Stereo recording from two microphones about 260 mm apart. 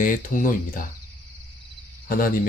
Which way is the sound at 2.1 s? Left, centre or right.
Left.